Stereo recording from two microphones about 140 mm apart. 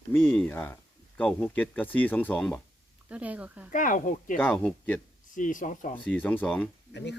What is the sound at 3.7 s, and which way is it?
Speech, 70° left (ahead or behind).